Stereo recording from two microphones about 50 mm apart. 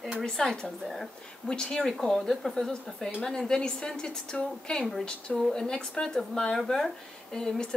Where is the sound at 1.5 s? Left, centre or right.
Centre.